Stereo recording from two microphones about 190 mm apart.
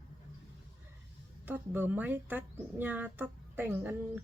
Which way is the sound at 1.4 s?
10° right (ahead or behind).